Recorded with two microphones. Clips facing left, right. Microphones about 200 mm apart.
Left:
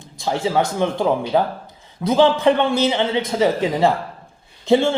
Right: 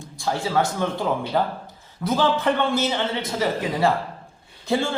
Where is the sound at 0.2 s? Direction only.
20° left (ahead or behind).